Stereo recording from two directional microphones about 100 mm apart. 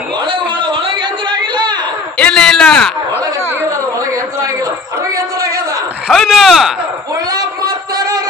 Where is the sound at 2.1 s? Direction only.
10° left (ahead or behind).